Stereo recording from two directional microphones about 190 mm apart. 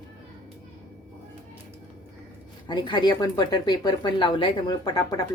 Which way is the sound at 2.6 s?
25° left (ahead or behind).